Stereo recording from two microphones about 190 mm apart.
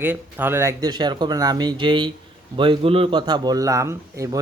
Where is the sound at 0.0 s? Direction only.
10° right (ahead or behind).